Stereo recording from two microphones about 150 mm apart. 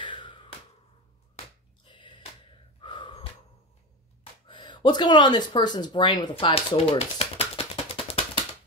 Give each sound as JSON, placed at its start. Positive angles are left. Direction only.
{"t": 0.0, "sound": "finger snapping", "side_deg": 35}
{"t": 1.9, "sound": "a sound", "side_deg": 30}
{"t": 2.8, "sound": "gasp", "side_deg": 35}
{"t": 4.5, "sound": "speech", "side_deg": 30}